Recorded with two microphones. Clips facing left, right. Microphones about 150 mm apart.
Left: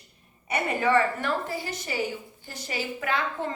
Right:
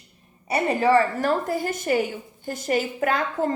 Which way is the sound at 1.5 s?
50° right (ahead or behind).